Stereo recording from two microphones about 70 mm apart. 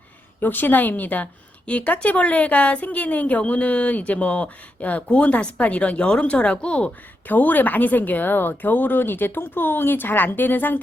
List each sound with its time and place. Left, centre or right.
0.3 s a woman's voice: left